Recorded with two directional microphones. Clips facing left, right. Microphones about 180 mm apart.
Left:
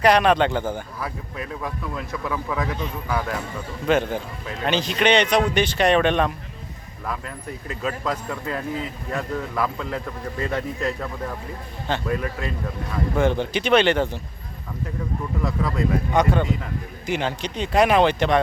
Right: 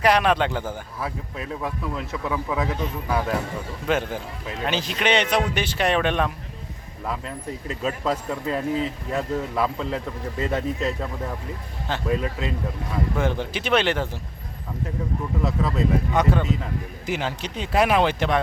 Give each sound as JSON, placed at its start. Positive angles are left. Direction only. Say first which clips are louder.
{"t": 0.0, "sound": "speech", "louder": "left 3 dB", "side_deg": -5}
{"t": 0.9, "sound": "speech", "louder": "even", "side_deg": -25}
{"t": 3.8, "sound": "speech", "louder": "left 4 dB", "side_deg": -5}
{"t": 7.0, "sound": "speech", "louder": "right 1 dB", "side_deg": -25}
{"t": 12.0, "sound": "speech", "louder": "right 1 dB", "side_deg": -20}
{"t": 13.1, "sound": "speech", "louder": "left 8 dB", "side_deg": -5}
{"t": 15.4, "sound": "speech", "louder": "right 1 dB", "side_deg": -25}
{"t": 16.1, "sound": "speech", "louder": "left 4 dB", "side_deg": -5}